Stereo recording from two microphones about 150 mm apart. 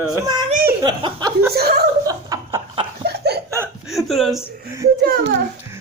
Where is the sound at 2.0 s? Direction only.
25° right (ahead or behind).